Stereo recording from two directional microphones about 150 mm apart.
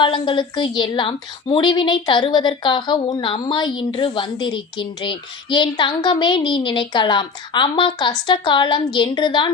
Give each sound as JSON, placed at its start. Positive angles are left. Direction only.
{"t": 0.0, "sound": "a woman's voice", "side_deg": 35}